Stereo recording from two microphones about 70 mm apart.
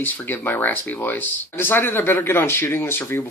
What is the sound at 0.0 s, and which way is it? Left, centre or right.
Speech, left.